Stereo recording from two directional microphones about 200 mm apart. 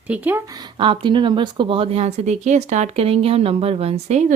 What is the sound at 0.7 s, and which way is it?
Speech, 25° right (ahead or behind).